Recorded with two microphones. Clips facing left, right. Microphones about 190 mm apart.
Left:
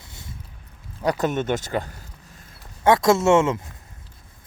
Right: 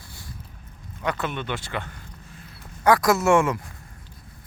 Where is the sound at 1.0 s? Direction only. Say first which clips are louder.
Left 6 dB; 40° left (ahead or behind).